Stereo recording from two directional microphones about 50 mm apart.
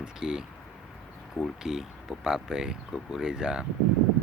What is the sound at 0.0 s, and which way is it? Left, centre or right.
Speech, centre.